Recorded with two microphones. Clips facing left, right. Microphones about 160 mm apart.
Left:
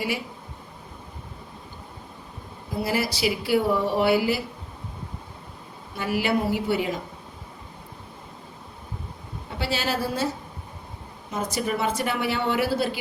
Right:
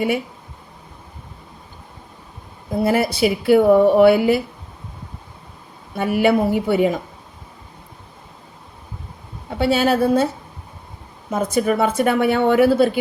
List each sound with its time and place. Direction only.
2.8 s speech: 55° right (ahead or behind)
6.0 s speech: 55° right (ahead or behind)
9.6 s speech: 55° right (ahead or behind)
11.3 s a woman's voice: 55° right (ahead or behind)